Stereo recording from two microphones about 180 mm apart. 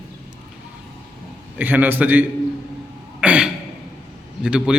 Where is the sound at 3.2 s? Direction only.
5° right (ahead or behind).